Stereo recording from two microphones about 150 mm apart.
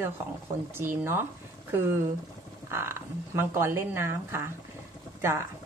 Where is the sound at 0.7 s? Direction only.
15° right (ahead or behind).